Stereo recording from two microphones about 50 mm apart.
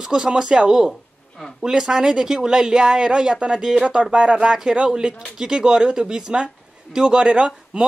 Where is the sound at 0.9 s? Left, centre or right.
Centre.